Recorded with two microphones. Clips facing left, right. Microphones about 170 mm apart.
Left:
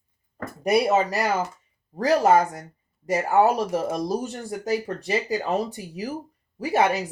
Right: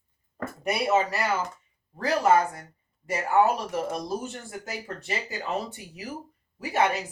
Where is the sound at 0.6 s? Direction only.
35° left (ahead or behind).